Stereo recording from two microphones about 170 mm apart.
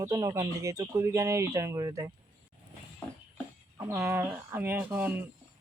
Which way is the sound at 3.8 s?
15° right (ahead or behind).